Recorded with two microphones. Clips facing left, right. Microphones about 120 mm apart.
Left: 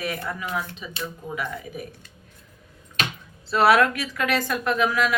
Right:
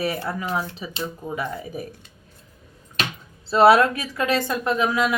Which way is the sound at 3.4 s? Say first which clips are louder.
Right 3 dB; 25° right (ahead or behind).